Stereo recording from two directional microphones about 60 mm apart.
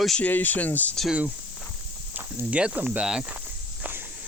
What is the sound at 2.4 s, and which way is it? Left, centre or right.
Speech, centre.